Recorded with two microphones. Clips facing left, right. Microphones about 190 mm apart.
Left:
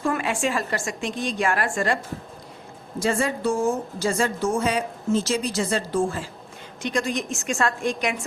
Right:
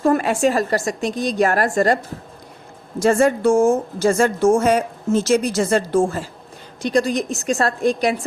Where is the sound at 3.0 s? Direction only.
45° right (ahead or behind).